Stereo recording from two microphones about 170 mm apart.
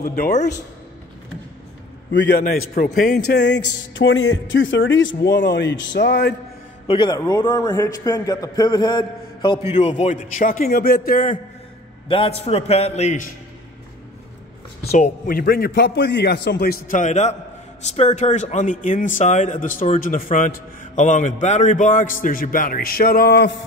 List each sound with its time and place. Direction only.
0.1 s a man's voice: 60° left (ahead or behind)
2.1 s a man's voice: 75° left (ahead or behind)
2.4 s speech: 50° left (ahead or behind)
3.3 s speech: 90° left
6.9 s a man's voice: 25° left (ahead or behind)
9.8 s speech: 45° left (ahead or behind)
12.1 s a man's voice: 35° left (ahead or behind)
14.9 s a man's voice: 50° left (ahead or behind)
17.0 s speech: 40° left (ahead or behind); by 23.6 s 80° left